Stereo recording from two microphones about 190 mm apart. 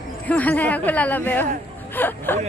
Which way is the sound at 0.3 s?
10° left (ahead or behind).